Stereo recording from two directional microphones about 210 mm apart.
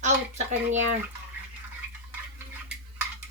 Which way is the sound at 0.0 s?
35° right (ahead or behind).